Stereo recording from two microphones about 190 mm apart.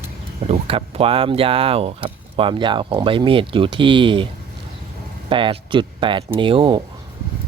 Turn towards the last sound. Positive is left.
turn(degrees=-25)  # may be behind; listen again after turning